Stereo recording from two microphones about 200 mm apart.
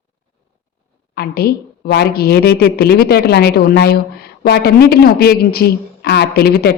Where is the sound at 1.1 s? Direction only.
50° left (ahead or behind).